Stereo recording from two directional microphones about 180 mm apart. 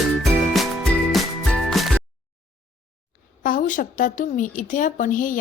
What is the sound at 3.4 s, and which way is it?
A woman's voice, 45° left (ahead or behind).